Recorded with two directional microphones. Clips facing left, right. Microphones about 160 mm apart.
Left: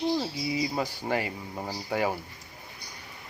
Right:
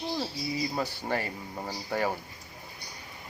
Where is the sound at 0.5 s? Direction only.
10° left (ahead or behind).